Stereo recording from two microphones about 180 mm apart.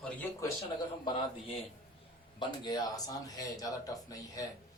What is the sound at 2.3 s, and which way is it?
Speech, 25° left (ahead or behind).